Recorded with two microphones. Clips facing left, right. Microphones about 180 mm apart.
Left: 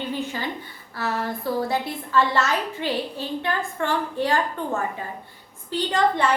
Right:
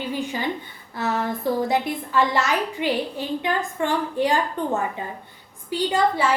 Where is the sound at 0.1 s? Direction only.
15° right (ahead or behind).